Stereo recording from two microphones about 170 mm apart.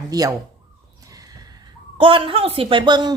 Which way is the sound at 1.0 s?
20° right (ahead or behind).